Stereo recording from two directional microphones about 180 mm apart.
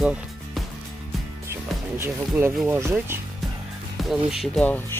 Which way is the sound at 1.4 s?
15° right (ahead or behind).